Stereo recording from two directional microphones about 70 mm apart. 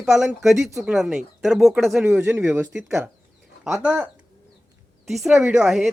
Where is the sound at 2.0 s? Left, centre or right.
Centre.